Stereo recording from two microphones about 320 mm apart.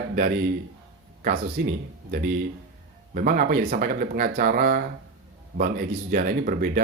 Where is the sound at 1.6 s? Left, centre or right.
Right.